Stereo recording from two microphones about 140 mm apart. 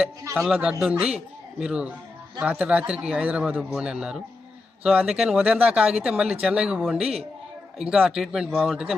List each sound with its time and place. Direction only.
0.4 s speech: 5° right (ahead or behind)